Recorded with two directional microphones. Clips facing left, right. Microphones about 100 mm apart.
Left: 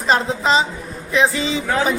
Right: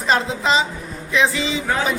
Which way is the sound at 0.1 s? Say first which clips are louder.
Left 2 dB; 35° left (ahead or behind).